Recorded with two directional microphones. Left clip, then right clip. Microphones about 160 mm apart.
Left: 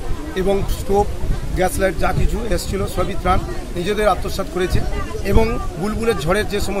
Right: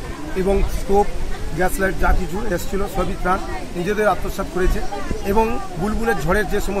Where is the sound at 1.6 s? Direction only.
20° left (ahead or behind).